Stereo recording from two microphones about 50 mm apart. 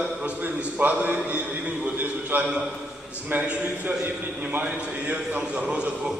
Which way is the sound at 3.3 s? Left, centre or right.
Right.